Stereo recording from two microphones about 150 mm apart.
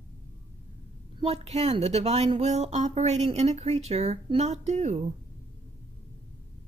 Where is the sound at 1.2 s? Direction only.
40° right (ahead or behind).